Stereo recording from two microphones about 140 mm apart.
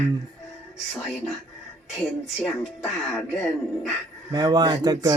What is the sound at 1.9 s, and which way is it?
Speech, centre (ahead or behind).